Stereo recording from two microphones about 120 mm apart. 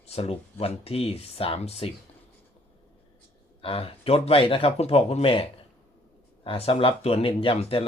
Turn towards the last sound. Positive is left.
turn(degrees=55)  # may be behind; listen again after turning